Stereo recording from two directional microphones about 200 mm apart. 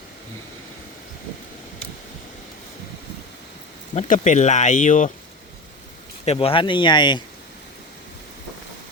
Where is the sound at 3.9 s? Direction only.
35° left (ahead or behind).